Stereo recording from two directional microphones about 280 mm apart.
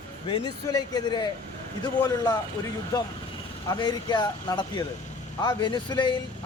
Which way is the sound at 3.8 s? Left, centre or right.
Centre.